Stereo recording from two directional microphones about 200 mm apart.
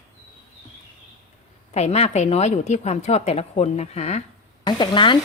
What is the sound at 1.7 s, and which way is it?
A woman's voice, 30° left (ahead or behind).